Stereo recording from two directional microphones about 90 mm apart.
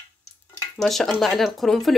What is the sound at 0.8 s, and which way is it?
Speech, centre (ahead or behind).